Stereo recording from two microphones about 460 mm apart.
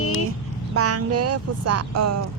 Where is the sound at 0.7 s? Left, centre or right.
Right.